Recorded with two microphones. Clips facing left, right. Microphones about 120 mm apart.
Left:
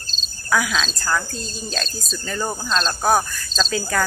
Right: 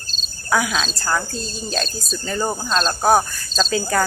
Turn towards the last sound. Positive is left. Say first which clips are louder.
# right 3 dB
turn(degrees=-15)  # may be behind; listen again after turning